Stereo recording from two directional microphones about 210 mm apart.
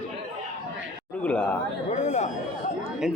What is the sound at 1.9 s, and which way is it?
Speech, 35° left (ahead or behind).